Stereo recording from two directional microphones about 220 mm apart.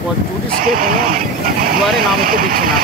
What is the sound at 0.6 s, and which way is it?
Speech, 40° right (ahead or behind).